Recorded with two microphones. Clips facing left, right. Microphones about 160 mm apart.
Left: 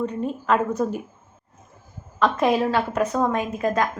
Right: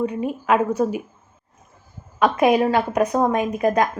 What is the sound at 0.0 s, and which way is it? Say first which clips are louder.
Speech: right 2 dB; 10° right (ahead or behind).